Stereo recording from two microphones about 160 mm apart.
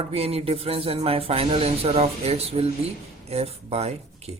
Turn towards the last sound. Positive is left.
turn(degrees=-40)  # may be behind; listen again after turning